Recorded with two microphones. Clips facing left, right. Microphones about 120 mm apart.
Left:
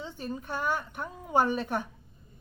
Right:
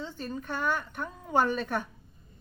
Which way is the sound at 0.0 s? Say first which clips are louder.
Even; 15° left (ahead or behind).